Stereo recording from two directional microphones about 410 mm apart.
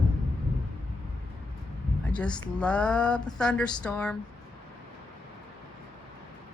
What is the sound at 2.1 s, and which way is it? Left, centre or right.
Speech, centre.